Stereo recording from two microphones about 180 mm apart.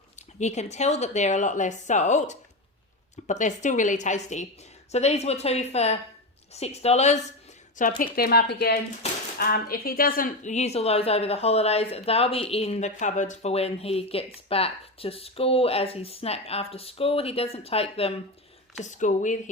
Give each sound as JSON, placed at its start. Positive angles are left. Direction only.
{"t": 0.3, "sound": "a woman's voice", "side_deg": 40}
{"t": 7.8, "sound": "a woman's voice", "side_deg": 50}